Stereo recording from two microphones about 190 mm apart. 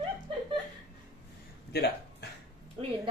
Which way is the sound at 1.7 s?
60° left (ahead or behind).